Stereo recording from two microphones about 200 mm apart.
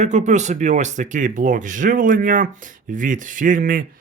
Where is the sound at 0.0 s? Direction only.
35° right (ahead or behind).